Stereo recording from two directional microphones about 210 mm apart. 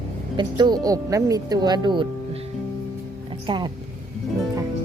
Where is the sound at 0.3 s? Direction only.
20° right (ahead or behind).